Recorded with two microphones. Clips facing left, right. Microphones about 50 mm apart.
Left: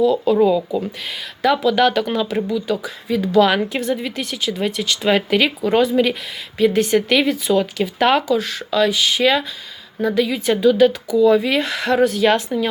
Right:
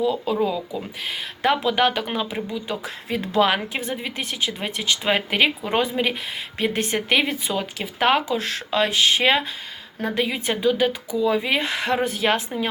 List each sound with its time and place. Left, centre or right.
0.0 s speech: centre
1.4 s speech: right
1.7 s speech: centre
2.8 s speech: right
3.4 s speech: centre
6.6 s speech: right
7.5 s speech: centre
8.4 s speech: right; by 12.5 s centre